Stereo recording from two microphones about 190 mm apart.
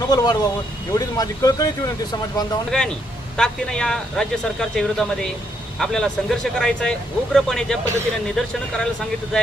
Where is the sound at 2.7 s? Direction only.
5° left (ahead or behind).